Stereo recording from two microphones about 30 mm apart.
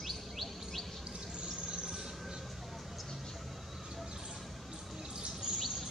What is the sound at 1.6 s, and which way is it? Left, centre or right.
Train, right.